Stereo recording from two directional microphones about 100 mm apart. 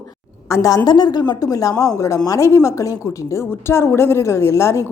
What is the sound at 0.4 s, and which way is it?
Speech, 35° left (ahead or behind).